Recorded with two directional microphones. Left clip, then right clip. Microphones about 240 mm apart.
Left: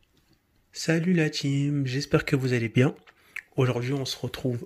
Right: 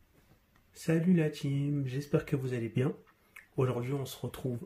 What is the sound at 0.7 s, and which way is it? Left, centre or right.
Speech, left.